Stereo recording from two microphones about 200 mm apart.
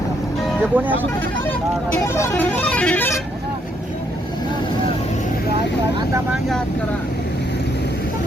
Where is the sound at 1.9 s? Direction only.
15° left (ahead or behind).